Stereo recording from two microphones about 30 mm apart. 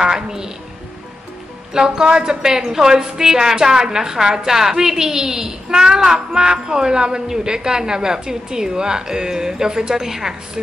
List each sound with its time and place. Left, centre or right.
0.0 s music: centre
1.7 s a woman's voice: right